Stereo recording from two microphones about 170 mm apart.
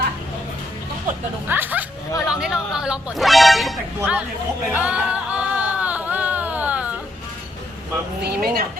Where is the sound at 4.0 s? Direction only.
5° right (ahead or behind).